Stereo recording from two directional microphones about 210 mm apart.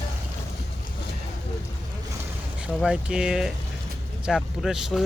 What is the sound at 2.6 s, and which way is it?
Speech, 5° right (ahead or behind).